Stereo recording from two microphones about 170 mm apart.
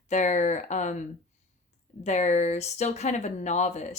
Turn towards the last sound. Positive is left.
turn(degrees=45)  # may be behind; listen again after turning